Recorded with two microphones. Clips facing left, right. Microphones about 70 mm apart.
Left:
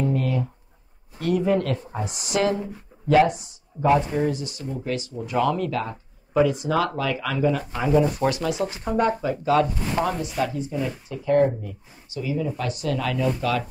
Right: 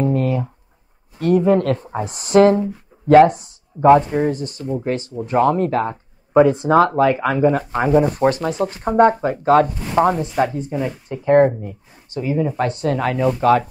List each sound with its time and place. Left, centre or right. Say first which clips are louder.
0.1 s writing: right 5 dB; right
1.2 s speech: right 7 dB; right